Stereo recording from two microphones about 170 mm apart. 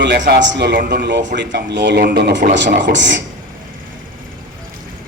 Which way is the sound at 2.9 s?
90° right.